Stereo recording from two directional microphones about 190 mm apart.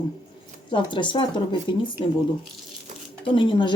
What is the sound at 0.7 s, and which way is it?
A woman's voice, 25° left (ahead or behind).